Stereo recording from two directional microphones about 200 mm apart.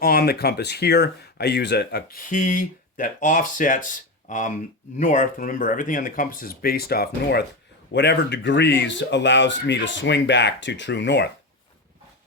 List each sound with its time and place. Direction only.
0.0 s speech: 50° left (ahead or behind)